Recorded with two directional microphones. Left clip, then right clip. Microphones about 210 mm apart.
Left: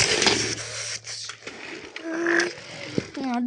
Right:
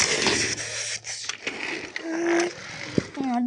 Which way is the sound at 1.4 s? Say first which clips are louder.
Right 7 dB; 40° right (ahead or behind).